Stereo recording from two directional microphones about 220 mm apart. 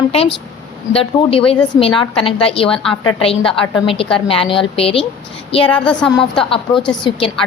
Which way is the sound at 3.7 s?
25° left (ahead or behind).